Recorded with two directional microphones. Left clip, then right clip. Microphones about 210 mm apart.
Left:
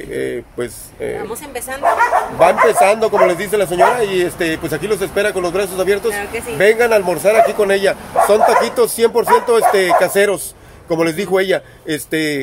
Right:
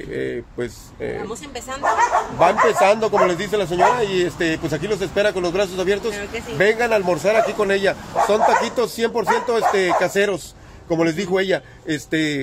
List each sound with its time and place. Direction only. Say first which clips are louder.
0.1 s speech: left 4 dB; 5° left (ahead or behind)
2.3 s a man's voice: left 5 dB; centre (ahead or behind)